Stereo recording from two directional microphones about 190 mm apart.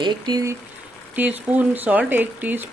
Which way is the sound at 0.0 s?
25° right (ahead or behind).